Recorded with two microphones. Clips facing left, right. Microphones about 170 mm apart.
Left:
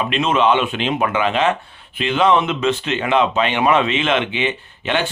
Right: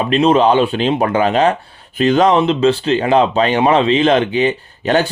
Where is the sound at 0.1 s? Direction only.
35° right (ahead or behind).